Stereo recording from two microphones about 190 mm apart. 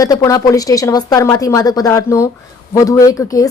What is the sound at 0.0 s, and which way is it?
Speech, 20° left (ahead or behind).